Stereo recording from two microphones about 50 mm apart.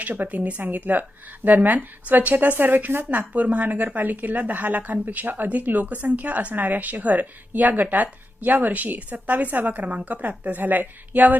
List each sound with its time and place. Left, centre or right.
0.0 s speech: right